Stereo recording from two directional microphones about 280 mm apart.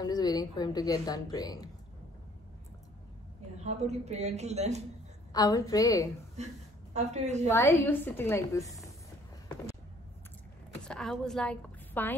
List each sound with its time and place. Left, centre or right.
0.0 s a woman's voice: centre
3.6 s speech: right
5.3 s a woman's voice: centre
6.3 s a woman's voice: right
7.4 s a woman's voice: centre
10.8 s a woman's voice: centre